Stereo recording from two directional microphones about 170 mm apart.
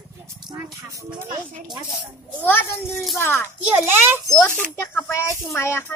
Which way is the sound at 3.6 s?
10° right (ahead or behind).